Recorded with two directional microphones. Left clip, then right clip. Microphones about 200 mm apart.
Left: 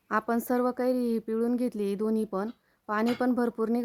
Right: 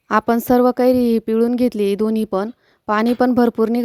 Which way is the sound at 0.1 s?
40° right (ahead or behind).